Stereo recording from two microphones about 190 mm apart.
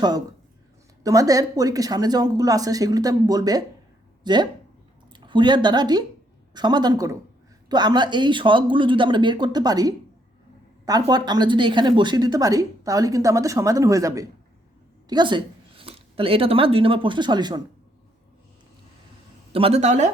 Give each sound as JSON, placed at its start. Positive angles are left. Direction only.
{"t": 1.0, "sound": "speech", "side_deg": -20}
{"t": 11.1, "sound": "a woman's voice", "side_deg": -20}
{"t": 19.5, "sound": "speech", "side_deg": -30}